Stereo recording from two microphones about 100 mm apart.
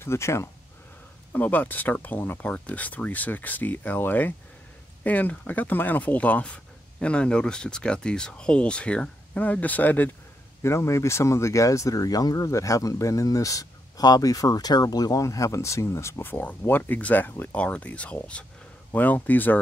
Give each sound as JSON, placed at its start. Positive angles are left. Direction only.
{"t": 0.0, "sound": "speech", "side_deg": 25}
{"t": 10.6, "sound": "speech", "side_deg": 30}